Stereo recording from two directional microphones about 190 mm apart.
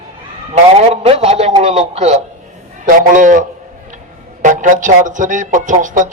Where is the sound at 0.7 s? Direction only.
30° right (ahead or behind).